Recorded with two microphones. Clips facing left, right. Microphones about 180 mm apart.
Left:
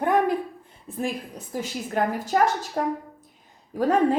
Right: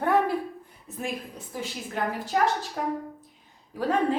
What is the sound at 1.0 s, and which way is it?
A woman's voice, 40° left (ahead or behind).